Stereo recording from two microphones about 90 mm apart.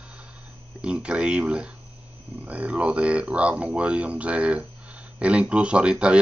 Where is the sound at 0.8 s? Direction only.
15° right (ahead or behind).